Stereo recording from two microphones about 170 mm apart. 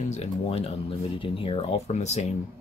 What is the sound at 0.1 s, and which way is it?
Speech, 35° left (ahead or behind).